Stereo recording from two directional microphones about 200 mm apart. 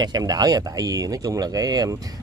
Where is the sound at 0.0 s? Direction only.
20° right (ahead or behind).